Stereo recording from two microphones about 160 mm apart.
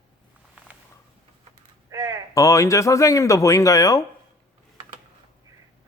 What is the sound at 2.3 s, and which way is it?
Speech, 20° left (ahead or behind).